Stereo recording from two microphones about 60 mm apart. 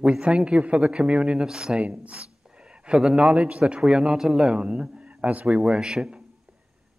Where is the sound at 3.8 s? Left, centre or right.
Centre.